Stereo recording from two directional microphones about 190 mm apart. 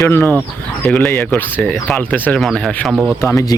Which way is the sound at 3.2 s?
15° left (ahead or behind).